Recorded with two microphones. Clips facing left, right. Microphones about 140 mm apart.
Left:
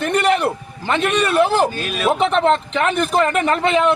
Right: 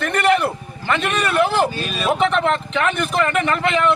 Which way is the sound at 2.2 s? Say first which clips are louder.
Left 2 dB; 30° left (ahead or behind).